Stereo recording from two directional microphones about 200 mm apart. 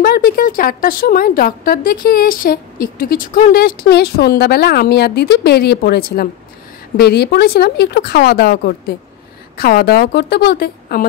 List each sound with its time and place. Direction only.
0.0 s a woman's voice: 50° left (ahead or behind)